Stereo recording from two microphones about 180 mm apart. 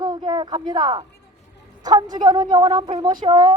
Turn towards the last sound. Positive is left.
turn(degrees=-25)  # may be behind; listen again after turning